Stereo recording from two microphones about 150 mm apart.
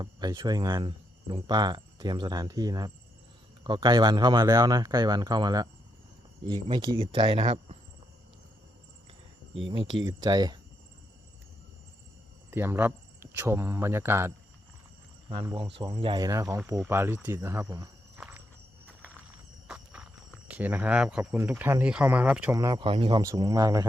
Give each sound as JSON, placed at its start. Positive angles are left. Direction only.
{"t": 0.0, "sound": "speech", "side_deg": -30}
{"t": 9.6, "sound": "speech", "side_deg": -30}
{"t": 12.5, "sound": "speech", "side_deg": -15}
{"t": 15.5, "sound": "speech", "side_deg": -30}
{"t": 18.2, "sound": "walk", "side_deg": -15}
{"t": 19.6, "sound": "horse", "side_deg": -5}
{"t": 20.5, "sound": "speech", "side_deg": -10}
{"t": 21.2, "sound": "speech", "side_deg": -15}
{"t": 22.5, "sound": "speech", "side_deg": -25}
{"t": 22.8, "sound": "speech", "side_deg": -35}
{"t": 23.2, "sound": "speech", "side_deg": -20}